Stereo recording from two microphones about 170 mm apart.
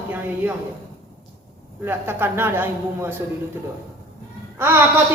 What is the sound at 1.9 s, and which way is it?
Speech, 15° right (ahead or behind).